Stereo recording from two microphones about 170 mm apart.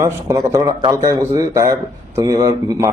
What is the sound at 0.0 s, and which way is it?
Speech, 20° right (ahead or behind).